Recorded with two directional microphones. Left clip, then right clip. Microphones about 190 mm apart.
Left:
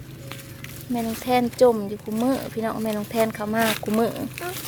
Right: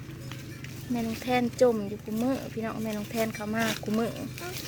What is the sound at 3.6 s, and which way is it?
Speech, 50° left (ahead or behind).